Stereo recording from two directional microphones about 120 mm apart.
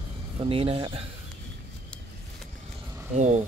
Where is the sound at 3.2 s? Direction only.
75° right (ahead or behind).